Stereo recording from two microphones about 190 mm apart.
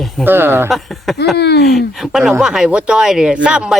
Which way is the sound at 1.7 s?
Centre (ahead or behind).